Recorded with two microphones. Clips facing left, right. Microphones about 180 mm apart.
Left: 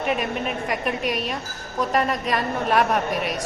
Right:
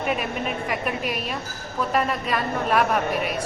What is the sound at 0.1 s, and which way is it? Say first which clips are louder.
A woman's voice: left 2 dB; centre (ahead or behind).